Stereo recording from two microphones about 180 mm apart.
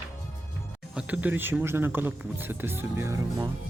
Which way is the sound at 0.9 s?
5° right (ahead or behind).